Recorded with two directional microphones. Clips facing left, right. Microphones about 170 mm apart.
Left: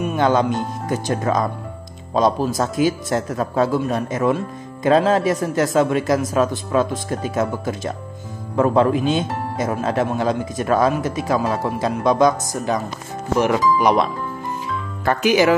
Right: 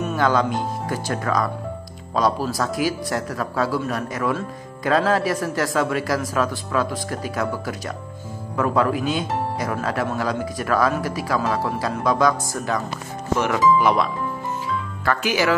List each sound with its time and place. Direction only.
0.0 s speech: 20° left (ahead or behind)
15.0 s speech: 20° left (ahead or behind)